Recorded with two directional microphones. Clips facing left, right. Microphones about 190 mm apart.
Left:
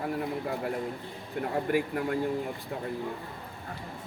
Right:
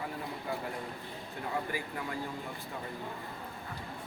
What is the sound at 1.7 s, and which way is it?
Speech, 55° left (ahead or behind).